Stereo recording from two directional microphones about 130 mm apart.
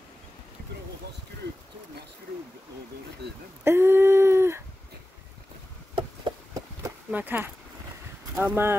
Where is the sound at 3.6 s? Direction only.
20° right (ahead or behind).